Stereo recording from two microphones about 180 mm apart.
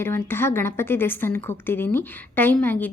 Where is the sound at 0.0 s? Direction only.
15° left (ahead or behind).